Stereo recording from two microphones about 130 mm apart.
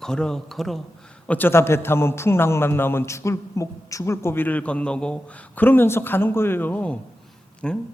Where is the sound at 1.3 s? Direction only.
15° left (ahead or behind).